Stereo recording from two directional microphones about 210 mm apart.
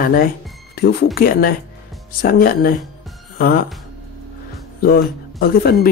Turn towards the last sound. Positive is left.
turn(degrees=45)  # may be behind; listen again after turning